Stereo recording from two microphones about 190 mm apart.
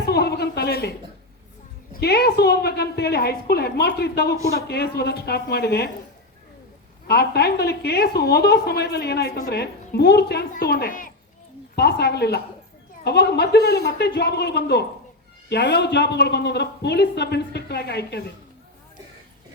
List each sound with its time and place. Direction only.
0.0 s a sound: 55° left (ahead or behind)
1.9 s a woman's voice: 60° left (ahead or behind)
7.1 s a woman's voice: 55° left (ahead or behind)
11.8 s a woman's voice: 60° left (ahead or behind)